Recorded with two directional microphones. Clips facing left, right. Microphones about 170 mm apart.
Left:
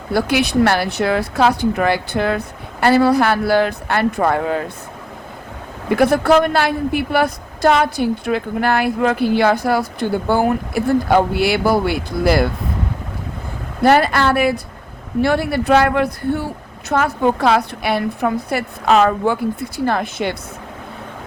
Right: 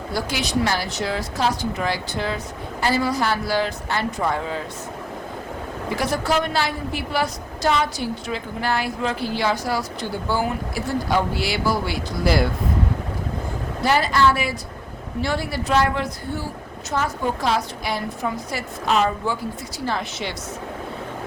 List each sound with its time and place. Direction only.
0.1 s a woman's voice: 60° left (ahead or behind)
5.9 s a woman's voice: 60° left (ahead or behind)
13.8 s a woman's voice: 55° left (ahead or behind)